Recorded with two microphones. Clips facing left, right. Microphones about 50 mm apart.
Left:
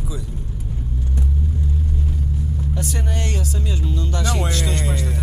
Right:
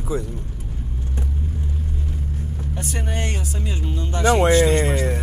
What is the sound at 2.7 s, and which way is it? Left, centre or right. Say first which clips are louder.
Speech: right 2 dB; right.